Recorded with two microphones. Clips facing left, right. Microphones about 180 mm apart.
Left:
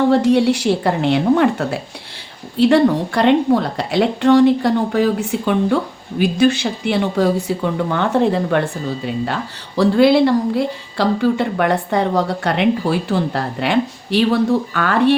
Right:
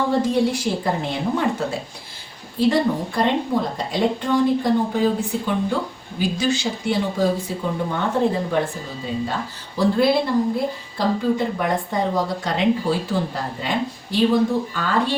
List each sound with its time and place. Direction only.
0.1 s speech: 75° left (ahead or behind)
6.1 s speech: 60° left (ahead or behind)